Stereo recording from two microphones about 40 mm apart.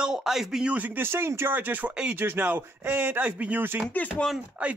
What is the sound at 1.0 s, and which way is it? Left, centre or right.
Speech, right.